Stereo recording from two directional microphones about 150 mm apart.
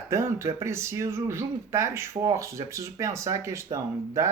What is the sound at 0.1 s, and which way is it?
Speech, 20° right (ahead or behind).